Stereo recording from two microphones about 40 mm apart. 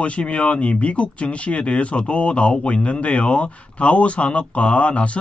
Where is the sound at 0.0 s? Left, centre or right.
Left.